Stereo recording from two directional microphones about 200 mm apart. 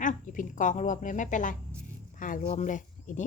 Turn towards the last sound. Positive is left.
turn(degrees=40)  # may be behind; listen again after turning